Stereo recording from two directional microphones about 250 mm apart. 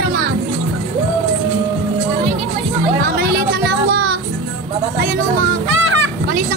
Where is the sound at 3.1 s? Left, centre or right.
Right.